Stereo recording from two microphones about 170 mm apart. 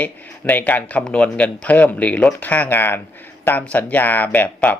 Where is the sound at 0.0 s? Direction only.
10° left (ahead or behind).